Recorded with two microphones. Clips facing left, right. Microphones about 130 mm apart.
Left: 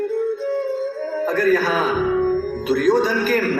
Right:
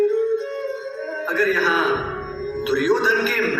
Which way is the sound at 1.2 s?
45° left (ahead or behind).